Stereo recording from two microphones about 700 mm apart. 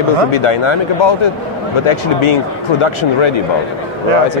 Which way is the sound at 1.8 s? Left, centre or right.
Left.